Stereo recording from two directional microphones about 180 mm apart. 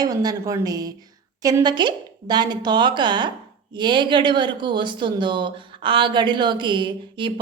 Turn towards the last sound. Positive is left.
turn(degrees=-25)  # may be behind; listen again after turning